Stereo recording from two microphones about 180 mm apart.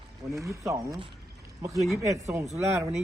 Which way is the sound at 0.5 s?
15° right (ahead or behind).